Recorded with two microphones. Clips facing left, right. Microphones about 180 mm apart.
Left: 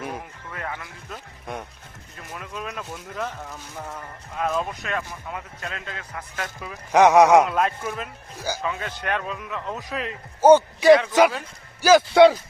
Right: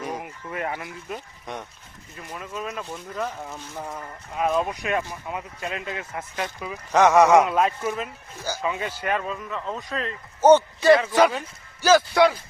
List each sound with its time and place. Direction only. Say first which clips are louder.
0.1 s speech: right 3 dB; 15° right (ahead or behind)
2.3 s a man's voice: right 2 dB; centre (ahead or behind); by 5.0 s 15° right (ahead or behind)
5.3 s speech: right 3 dB; 5° right (ahead or behind)
6.4 s a man's voice: right 3 dB; 5° right (ahead or behind)
6.9 s speech: left 2 dB; 15° left (ahead or behind)
7.4 s a man's voice: right 1 dB; centre (ahead or behind)
12.1 s speech: left 5 dB; 25° left (ahead or behind)